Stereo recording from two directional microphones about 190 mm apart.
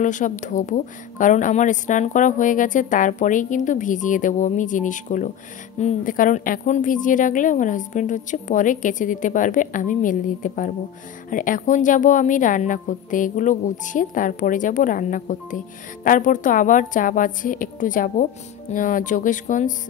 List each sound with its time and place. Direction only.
0.0 s a woman's voice: 40° left (ahead or behind)